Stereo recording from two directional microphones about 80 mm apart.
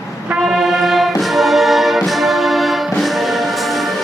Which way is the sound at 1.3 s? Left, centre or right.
Centre.